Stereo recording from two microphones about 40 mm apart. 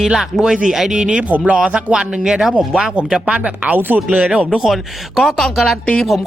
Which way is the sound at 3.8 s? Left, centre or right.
Right.